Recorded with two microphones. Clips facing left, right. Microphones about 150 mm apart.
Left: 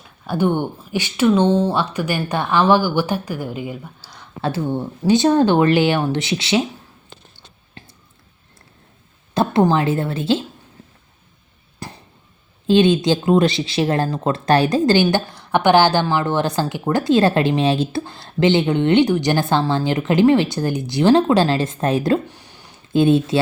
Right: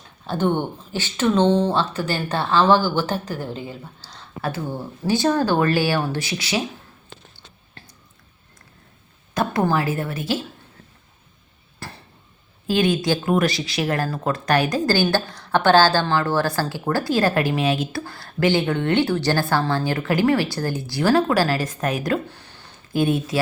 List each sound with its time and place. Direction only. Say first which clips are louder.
0.3 s speech: left 2 dB; 10° left (ahead or behind)
4.4 s a woman's voice: left 5 dB; 25° left (ahead or behind)
7.8 s a sound: left 4 dB; 15° left (ahead or behind)
9.3 s a woman's voice: left 5 dB; 25° left (ahead or behind)
11.8 s a sound: left 3 dB; 15° left (ahead or behind)
12.6 s a woman's voice: left 6 dB; 25° left (ahead or behind)
15.1 s a woman's voice: left 2 dB; 15° left (ahead or behind)
22.3 s a sound: left 1 dB; 15° left (ahead or behind)
23.0 s a woman's voice: left 6 dB; 25° left (ahead or behind)